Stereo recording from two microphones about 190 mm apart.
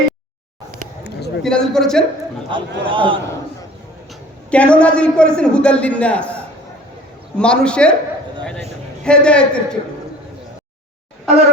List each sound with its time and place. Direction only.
1.0 s a sound: 60° left (ahead or behind)
1.5 s a man's voice: 5° left (ahead or behind)
2.5 s a man's voice: 25° right (ahead or behind)
4.5 s a man's voice: 5° left (ahead or behind)
9.0 s a man's voice: 5° left (ahead or behind)